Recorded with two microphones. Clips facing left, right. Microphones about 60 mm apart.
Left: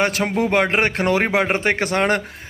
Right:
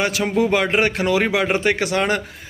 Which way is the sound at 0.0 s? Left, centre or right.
Left.